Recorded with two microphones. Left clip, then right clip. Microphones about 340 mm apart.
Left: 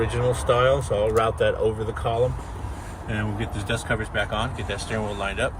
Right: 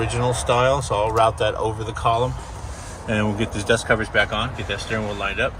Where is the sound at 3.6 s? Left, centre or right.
Centre.